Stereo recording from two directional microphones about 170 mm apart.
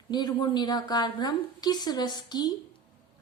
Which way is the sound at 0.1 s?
25° left (ahead or behind).